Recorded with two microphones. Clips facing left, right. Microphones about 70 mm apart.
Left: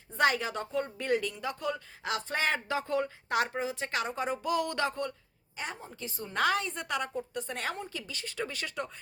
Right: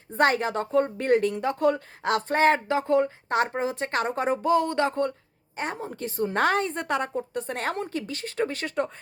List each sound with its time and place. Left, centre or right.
0.1 s speech: right
2.6 s a woman's voice: right
4.4 s a sound: right
5.5 s speech: right